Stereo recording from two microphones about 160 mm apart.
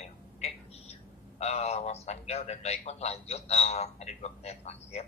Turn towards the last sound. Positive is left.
turn(degrees=40)  # may be behind; listen again after turning